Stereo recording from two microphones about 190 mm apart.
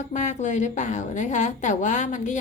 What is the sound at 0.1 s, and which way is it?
A woman's voice, 40° left (ahead or behind).